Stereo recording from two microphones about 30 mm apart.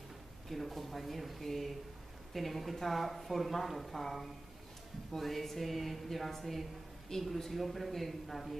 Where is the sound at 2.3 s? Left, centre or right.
Centre.